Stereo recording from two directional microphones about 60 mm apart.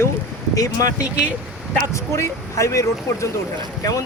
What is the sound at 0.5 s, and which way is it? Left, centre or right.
Speech, left.